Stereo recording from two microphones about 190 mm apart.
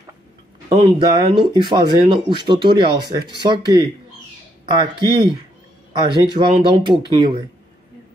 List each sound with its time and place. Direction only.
0.7 s speech: 25° right (ahead or behind)